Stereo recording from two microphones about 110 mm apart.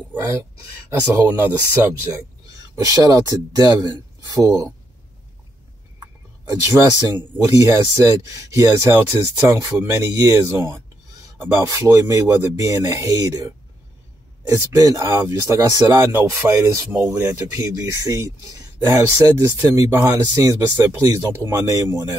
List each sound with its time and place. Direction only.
0.1 s speech: 25° right (ahead or behind)
2.7 s speech: 35° right (ahead or behind)
6.4 s speech: 35° right (ahead or behind)
14.5 s speech: 30° right (ahead or behind)
15.9 s speech: 20° right (ahead or behind)
17.8 s speech: 30° right (ahead or behind)